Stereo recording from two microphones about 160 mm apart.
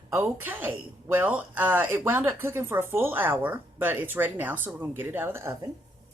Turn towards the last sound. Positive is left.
turn(degrees=-15)  # may be behind; listen again after turning